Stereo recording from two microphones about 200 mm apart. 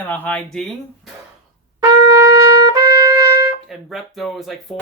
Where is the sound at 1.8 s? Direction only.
15° right (ahead or behind).